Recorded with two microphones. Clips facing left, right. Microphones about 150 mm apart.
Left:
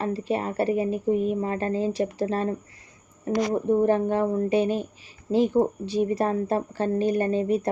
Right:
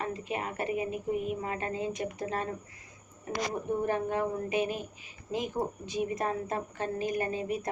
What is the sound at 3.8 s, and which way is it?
Speech, 30° left (ahead or behind).